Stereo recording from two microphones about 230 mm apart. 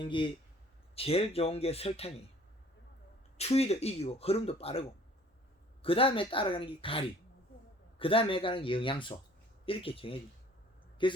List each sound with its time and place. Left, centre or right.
0.0 s speech: left
3.3 s speech: left